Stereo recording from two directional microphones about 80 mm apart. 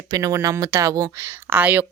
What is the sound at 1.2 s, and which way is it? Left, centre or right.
Speech, right.